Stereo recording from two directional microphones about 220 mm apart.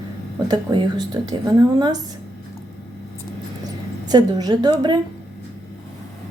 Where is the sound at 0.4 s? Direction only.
20° right (ahead or behind).